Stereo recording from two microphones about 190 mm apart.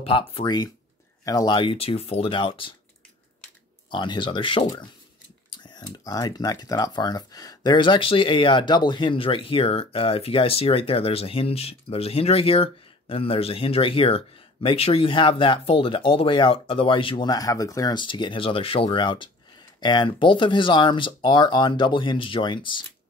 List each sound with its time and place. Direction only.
0.0 s speech: 30° left (ahead or behind)
3.9 s speech: 25° left (ahead or behind)